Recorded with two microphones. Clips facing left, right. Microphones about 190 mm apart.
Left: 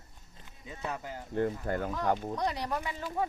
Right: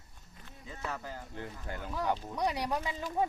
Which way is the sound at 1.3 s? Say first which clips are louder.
Left 17 dB; 55° left (ahead or behind).